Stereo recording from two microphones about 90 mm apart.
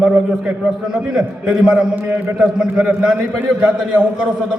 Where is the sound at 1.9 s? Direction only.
20° right (ahead or behind).